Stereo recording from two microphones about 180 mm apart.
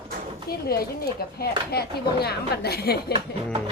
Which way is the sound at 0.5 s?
60° left (ahead or behind).